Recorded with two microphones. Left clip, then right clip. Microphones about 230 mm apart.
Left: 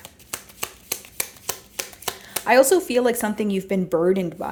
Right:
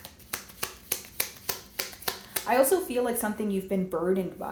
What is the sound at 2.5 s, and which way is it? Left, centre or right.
Speech, left.